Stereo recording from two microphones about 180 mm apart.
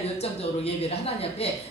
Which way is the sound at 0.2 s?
35° left (ahead or behind).